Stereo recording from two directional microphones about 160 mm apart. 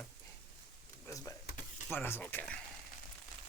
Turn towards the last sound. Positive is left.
turn(degrees=10)  # may be behind; listen again after turning